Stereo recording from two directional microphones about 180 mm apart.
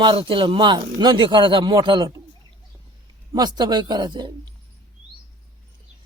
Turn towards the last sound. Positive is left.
turn(degrees=-25)  # may be behind; listen again after turning